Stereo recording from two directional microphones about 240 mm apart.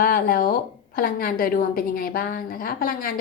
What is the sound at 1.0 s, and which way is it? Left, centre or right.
A woman's voice, left.